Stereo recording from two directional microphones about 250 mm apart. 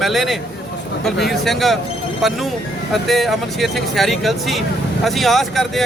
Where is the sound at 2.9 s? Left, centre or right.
Centre.